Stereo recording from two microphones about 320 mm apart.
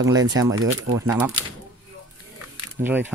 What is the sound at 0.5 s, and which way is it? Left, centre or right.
Speech, right.